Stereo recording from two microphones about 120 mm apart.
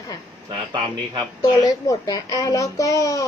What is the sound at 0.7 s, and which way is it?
Speech, 40° right (ahead or behind).